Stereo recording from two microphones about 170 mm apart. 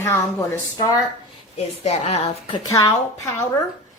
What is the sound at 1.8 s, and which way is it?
Speech, 40° left (ahead or behind).